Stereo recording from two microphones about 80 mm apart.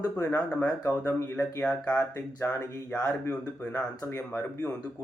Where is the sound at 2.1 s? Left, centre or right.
Left.